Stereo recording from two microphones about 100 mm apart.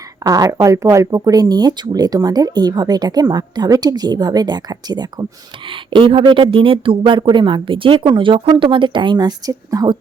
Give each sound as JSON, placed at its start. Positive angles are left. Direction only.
{"t": 0.3, "sound": "speech", "side_deg": -40}
{"t": 5.9, "sound": "speech", "side_deg": -60}